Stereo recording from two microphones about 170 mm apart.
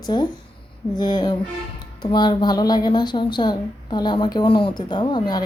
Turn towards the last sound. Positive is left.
turn(degrees=25)  # may be behind; listen again after turning